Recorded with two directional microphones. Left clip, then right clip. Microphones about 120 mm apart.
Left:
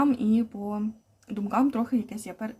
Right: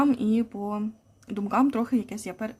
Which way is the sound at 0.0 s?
30° right (ahead or behind).